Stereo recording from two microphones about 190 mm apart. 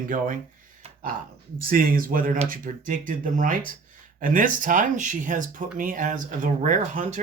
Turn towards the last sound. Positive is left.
turn(degrees=-40)  # may be behind; listen again after turning